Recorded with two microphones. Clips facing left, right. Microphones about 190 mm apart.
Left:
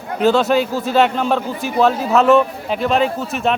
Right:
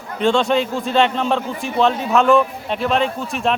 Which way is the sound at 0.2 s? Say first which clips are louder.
Left 2 dB; 5° left (ahead or behind).